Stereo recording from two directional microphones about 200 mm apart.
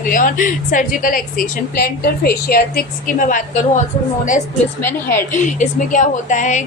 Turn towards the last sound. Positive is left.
turn(degrees=40)  # may be behind; listen again after turning